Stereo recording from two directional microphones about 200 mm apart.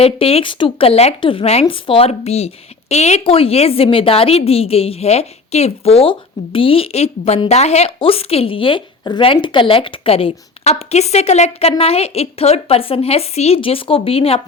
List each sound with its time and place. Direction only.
0.0 s a woman's voice: 30° left (ahead or behind)